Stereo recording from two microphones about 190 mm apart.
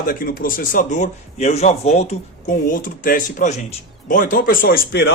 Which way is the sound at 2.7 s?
45° left (ahead or behind).